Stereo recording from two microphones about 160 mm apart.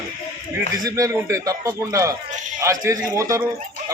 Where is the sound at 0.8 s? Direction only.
20° right (ahead or behind).